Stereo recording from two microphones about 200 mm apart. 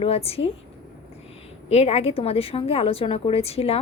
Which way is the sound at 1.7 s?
30° left (ahead or behind).